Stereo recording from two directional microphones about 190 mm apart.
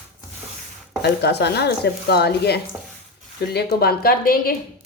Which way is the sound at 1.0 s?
60° left (ahead or behind).